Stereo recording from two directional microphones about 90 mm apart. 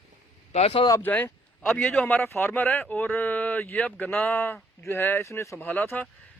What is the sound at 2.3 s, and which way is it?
Speech, 30° left (ahead or behind).